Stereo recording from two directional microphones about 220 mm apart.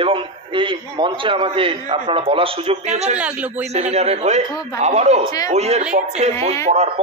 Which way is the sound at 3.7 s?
30° right (ahead or behind).